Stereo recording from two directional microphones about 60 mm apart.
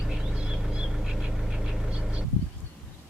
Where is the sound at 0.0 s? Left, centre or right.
Centre.